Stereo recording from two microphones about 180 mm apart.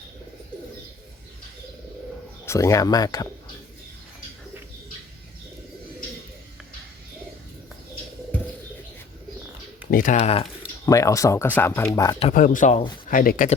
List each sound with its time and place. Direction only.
2.5 s speech: 15° left (ahead or behind)
9.9 s speech: 45° left (ahead or behind)
10.8 s speech: 20° left (ahead or behind)
12.3 s speech: 45° left (ahead or behind)